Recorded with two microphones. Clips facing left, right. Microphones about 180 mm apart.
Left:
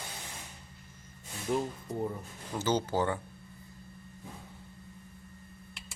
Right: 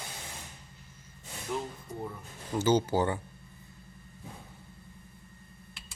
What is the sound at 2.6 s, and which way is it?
Speech, 10° right (ahead or behind).